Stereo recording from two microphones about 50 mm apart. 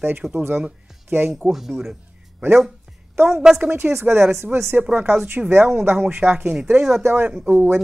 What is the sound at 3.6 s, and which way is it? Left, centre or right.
Speech, right.